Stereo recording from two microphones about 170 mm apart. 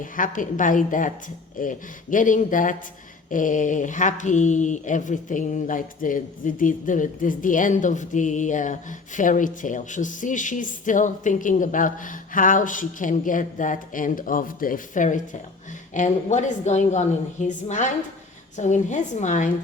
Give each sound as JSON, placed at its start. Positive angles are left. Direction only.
{"t": 0.0, "sound": "speech", "side_deg": 50}